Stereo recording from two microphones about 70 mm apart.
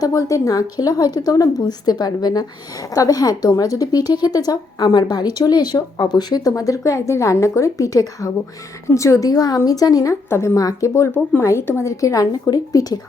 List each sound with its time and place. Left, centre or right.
0.0 s a woman's voice: left
8.9 s a woman's voice: left
10.2 s a woman's voice: left
10.6 s a woman's voice: left
11.9 s a woman's voice: left